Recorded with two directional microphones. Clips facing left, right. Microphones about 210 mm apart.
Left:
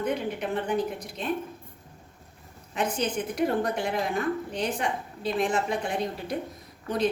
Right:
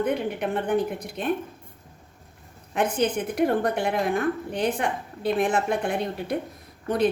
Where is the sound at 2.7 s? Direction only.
55° right (ahead or behind).